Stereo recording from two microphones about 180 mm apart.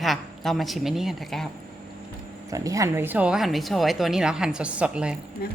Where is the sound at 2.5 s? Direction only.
20° right (ahead or behind).